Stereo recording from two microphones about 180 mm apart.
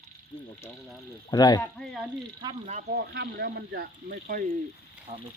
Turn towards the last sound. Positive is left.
turn(degrees=-35)  # may be behind; listen again after turning